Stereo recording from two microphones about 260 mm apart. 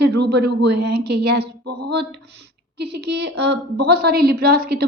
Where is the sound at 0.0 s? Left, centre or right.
Right.